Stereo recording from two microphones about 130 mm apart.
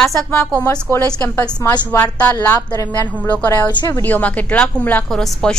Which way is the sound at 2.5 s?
30° left (ahead or behind).